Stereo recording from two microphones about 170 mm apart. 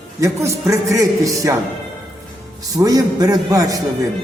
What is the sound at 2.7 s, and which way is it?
A man's voice, 20° right (ahead or behind).